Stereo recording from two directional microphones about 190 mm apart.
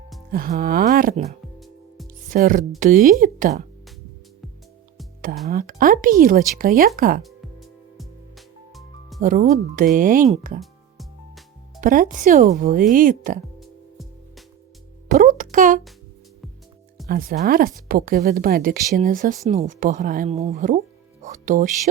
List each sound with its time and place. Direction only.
0.3 s speech: 50° right (ahead or behind)
1.5 s music: centre (ahead or behind)
2.3 s speech: 45° right (ahead or behind)
5.5 s speech: 50° right (ahead or behind)
7.2 s music: centre (ahead or behind)
9.2 s speech: 45° right (ahead or behind)
10.6 s music: centre (ahead or behind)
11.8 s speech: 45° right (ahead or behind)
13.6 s music: centre (ahead or behind)
15.1 s music: 45° right (ahead or behind)
17.1 s speech: 50° right (ahead or behind)
21.2 s music: 45° right (ahead or behind)